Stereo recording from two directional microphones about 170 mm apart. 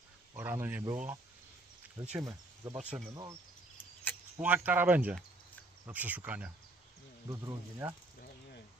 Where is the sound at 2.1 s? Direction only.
20° right (ahead or behind).